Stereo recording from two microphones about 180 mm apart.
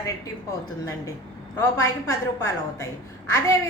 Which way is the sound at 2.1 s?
15° left (ahead or behind).